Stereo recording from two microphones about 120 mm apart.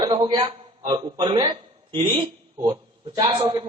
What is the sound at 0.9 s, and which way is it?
A man's voice, 35° right (ahead or behind).